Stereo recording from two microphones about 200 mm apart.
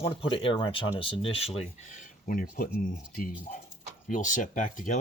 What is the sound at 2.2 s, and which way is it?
Speech, 45° left (ahead or behind).